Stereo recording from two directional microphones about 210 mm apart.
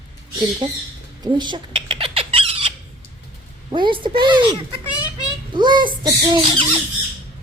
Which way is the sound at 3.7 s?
20° right (ahead or behind).